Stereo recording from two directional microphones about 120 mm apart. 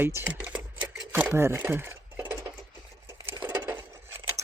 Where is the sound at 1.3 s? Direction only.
20° right (ahead or behind).